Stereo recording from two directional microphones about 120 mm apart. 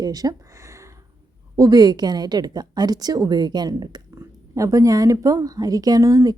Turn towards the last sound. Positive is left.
turn(degrees=-30)  # may be behind; listen again after turning